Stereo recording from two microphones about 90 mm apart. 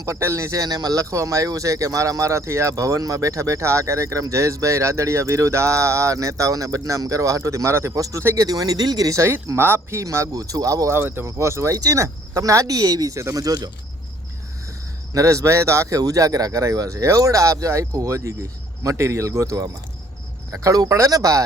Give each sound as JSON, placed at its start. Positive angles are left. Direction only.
{"t": 0.0, "sound": "speech", "side_deg": -30}
{"t": 15.1, "sound": "speech", "side_deg": -35}